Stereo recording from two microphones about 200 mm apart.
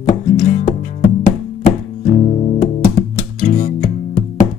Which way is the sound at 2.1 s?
35° left (ahead or behind).